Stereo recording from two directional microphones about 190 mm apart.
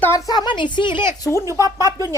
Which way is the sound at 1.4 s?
15° right (ahead or behind).